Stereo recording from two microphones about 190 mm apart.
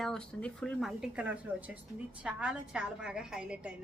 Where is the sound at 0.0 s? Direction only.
5° left (ahead or behind).